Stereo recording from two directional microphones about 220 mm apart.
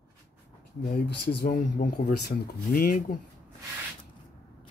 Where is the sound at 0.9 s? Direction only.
50° left (ahead or behind).